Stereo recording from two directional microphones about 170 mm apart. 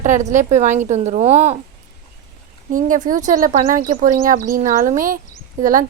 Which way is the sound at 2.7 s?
50° right (ahead or behind).